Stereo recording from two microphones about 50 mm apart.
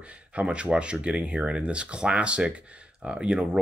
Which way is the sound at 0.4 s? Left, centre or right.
Right.